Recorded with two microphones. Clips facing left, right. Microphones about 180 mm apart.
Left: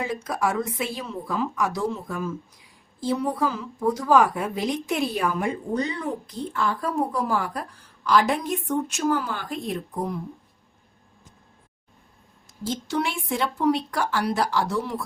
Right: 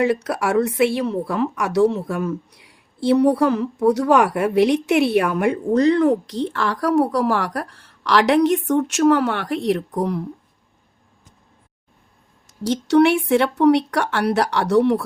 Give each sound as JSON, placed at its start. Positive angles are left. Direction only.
{"t": 0.0, "sound": "a woman's voice", "side_deg": -70}
{"t": 12.6, "sound": "a woman's voice", "side_deg": -75}